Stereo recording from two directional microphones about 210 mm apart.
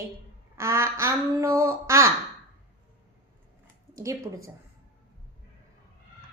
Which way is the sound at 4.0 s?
15° right (ahead or behind).